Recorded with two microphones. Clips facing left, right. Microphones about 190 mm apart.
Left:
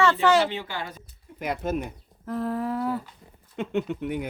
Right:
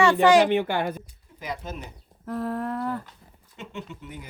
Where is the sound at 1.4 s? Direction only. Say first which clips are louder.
Left 7 dB; 55° left (ahead or behind).